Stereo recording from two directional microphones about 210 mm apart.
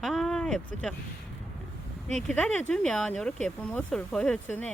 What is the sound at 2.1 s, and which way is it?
Speech, 5° left (ahead or behind).